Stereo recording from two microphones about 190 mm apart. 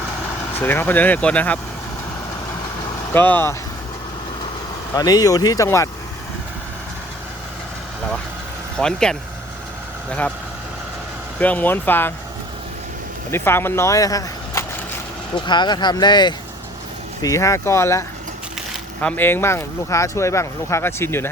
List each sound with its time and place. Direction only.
0.6 s speech: 10° left (ahead or behind)
3.1 s speech: 10° left (ahead or behind)
4.9 s speech: 20° left (ahead or behind)
8.8 s speech: 5° left (ahead or behind)
11.3 s speech: 10° left (ahead or behind)
13.3 s speech: 10° left (ahead or behind)
19.0 s speech: 10° left (ahead or behind)